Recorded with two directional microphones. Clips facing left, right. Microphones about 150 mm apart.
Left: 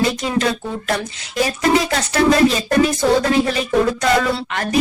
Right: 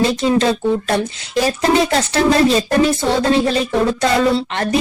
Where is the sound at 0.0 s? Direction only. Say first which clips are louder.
Right 4 dB; 30° right (ahead or behind).